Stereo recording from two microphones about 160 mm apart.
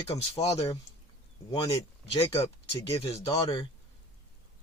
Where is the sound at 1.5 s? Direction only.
30° left (ahead or behind).